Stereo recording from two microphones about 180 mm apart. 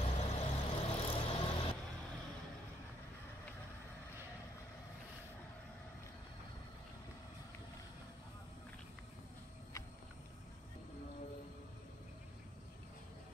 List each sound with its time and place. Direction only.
0.0 s vehicle: 35° left (ahead or behind)